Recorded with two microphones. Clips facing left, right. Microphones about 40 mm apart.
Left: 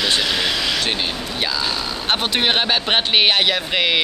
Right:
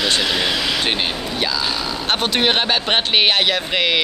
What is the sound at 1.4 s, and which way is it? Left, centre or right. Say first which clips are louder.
Speech: even; centre.